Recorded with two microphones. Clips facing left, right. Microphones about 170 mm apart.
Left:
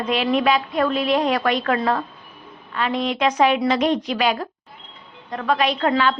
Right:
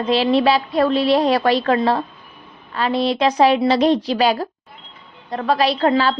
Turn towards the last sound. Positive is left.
turn(degrees=-35)  # may be behind; listen again after turning